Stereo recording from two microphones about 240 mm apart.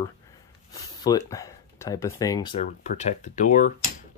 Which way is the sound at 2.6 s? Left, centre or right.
Left.